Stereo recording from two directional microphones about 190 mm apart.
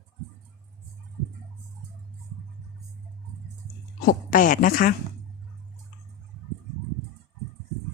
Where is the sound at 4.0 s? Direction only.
50° left (ahead or behind).